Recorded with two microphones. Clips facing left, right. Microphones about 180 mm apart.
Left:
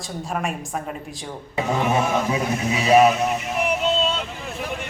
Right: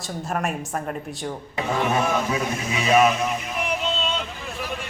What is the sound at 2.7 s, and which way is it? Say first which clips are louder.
Speech: left 3 dB; 35° left (ahead or behind).